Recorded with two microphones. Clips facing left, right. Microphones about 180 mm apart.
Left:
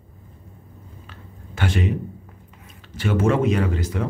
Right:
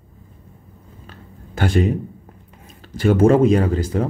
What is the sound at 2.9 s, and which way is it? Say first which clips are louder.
Speech: right 7 dB; 35° right (ahead or behind).